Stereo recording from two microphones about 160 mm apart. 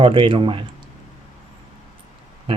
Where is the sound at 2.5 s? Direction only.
35° right (ahead or behind).